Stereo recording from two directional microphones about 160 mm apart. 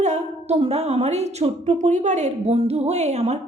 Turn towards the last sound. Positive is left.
turn(degrees=-45)  # may be behind; listen again after turning